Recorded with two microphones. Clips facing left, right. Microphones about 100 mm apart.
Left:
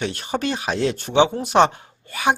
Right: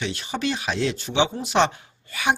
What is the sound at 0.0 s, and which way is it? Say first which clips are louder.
Speech: left 3 dB; 45° left (ahead or behind).